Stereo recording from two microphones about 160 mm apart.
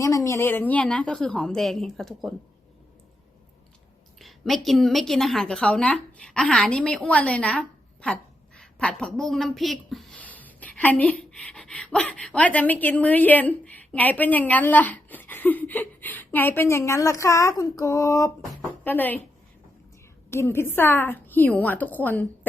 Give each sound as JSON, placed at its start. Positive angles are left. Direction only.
{"t": 0.0, "sound": "a woman's voice", "side_deg": 20}
{"t": 4.2, "sound": "a woman's voice", "side_deg": 0}
{"t": 20.3, "sound": "a woman's voice", "side_deg": 15}